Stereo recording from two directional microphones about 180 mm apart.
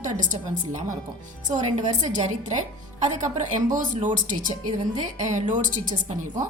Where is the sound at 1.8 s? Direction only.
40° right (ahead or behind).